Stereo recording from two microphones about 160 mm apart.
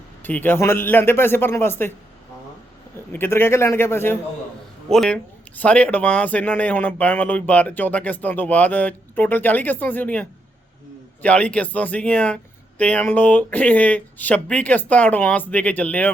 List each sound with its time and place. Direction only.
0.2 s speech: 10° left (ahead or behind)
3.1 s speech: 15° left (ahead or behind)